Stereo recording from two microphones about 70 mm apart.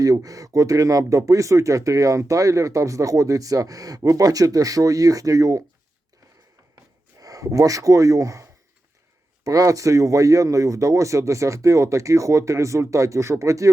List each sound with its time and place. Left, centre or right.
0.0 s speech: right
7.2 s speech: right